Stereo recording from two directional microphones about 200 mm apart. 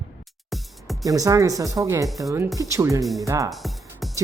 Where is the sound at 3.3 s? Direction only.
15° right (ahead or behind).